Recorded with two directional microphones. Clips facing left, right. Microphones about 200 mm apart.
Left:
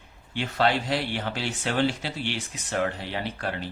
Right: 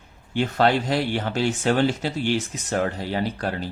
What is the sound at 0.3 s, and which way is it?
Speech, 45° right (ahead or behind).